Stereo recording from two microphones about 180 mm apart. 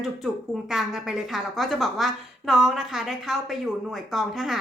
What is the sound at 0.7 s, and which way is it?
A woman's voice, centre (ahead or behind).